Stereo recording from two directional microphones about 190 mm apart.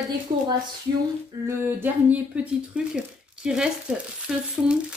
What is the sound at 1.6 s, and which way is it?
Speech, 10° right (ahead or behind).